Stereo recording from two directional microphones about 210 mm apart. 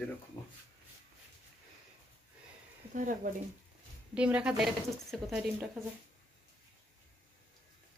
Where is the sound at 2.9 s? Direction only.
40° right (ahead or behind).